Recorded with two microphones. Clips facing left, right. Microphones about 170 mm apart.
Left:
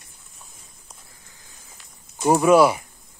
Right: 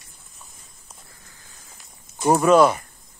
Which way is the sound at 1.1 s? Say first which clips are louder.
Right 1 dB; 15° left (ahead or behind).